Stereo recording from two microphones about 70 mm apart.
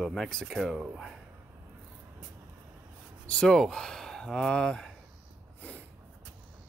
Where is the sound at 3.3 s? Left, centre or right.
Centre.